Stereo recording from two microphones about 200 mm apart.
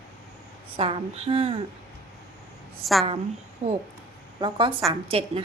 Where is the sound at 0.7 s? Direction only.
30° right (ahead or behind).